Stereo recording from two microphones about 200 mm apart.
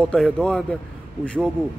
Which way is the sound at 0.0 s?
5° left (ahead or behind).